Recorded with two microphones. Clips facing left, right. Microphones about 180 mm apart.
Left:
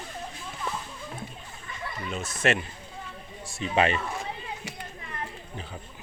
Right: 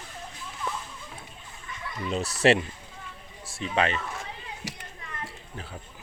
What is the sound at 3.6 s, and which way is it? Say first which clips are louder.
Speech: left 2 dB; 10° left (ahead or behind).